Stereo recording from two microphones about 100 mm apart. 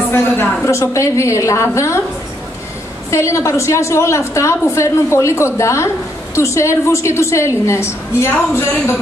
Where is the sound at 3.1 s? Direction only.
30° left (ahead or behind).